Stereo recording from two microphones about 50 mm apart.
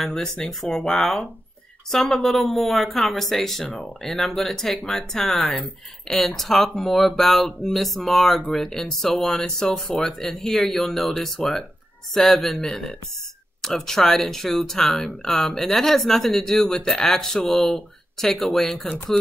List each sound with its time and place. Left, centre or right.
0.0 s speech: centre
9.6 s speech: left
10.3 s speech: centre
13.6 s speech: centre